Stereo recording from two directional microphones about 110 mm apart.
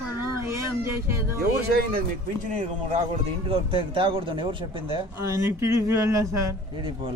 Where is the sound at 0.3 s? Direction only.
25° right (ahead or behind).